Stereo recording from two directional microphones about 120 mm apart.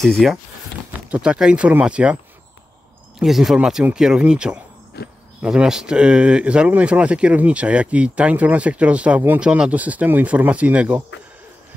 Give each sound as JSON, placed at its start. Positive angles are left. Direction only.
{"t": 0.0, "sound": "speech", "side_deg": 0}
{"t": 1.1, "sound": "speech", "side_deg": -10}
{"t": 3.2, "sound": "speech", "side_deg": 0}